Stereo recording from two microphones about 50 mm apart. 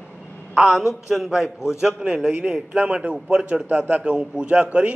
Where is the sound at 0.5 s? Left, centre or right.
Centre.